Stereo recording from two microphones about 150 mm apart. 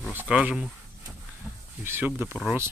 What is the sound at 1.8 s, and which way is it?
Speech, 15° right (ahead or behind).